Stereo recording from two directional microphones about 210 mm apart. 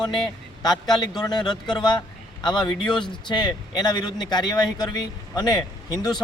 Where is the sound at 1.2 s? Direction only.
20° left (ahead or behind).